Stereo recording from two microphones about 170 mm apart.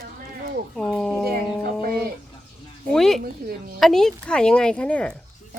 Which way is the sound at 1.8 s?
65° right (ahead or behind).